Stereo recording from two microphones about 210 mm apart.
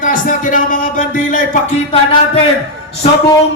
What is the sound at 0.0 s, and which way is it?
Speech, 40° left (ahead or behind).